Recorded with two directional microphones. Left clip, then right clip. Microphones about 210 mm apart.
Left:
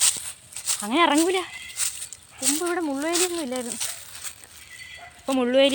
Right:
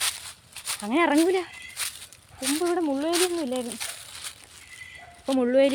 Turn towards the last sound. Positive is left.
turn(degrees=-5)  # may be behind; listen again after turning